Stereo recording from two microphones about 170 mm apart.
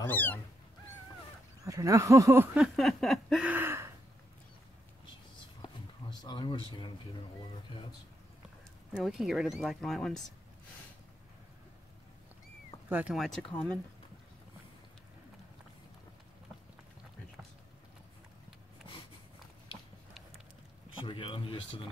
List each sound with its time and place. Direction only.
0.0 s cat: 10° left (ahead or behind)
1.6 s a sound: 20° right (ahead or behind); by 3.5 s centre (ahead or behind)
3.5 s gasp: 15° right (ahead or behind)
5.6 s a sound: 25° left (ahead or behind)
8.9 s speech: centre (ahead or behind)
12.9 s speech: 5° right (ahead or behind)
21.0 s speech: 30° left (ahead or behind)